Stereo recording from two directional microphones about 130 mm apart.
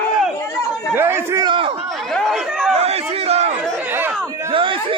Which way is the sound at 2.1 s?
Centre (ahead or behind).